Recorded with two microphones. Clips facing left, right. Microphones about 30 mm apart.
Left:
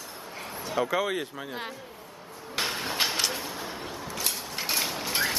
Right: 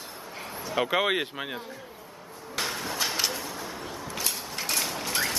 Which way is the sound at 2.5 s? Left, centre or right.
Left.